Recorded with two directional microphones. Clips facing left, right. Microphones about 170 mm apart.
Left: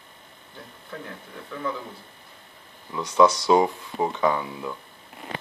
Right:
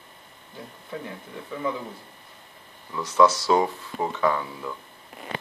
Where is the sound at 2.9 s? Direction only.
15° left (ahead or behind).